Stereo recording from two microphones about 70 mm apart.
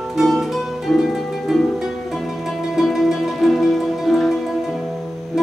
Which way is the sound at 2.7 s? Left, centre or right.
Centre.